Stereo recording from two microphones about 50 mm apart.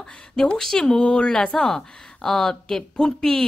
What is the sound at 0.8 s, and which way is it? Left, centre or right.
A woman's voice, left.